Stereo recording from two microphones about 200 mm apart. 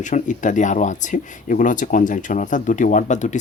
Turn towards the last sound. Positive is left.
turn(degrees=40)  # may be behind; listen again after turning